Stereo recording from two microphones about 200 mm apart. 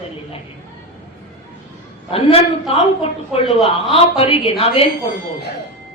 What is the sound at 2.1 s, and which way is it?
A woman's voice, 30° left (ahead or behind).